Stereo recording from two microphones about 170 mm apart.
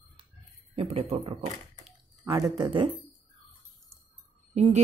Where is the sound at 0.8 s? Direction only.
40° right (ahead or behind).